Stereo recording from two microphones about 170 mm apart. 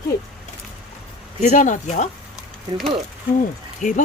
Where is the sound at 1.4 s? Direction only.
50° left (ahead or behind).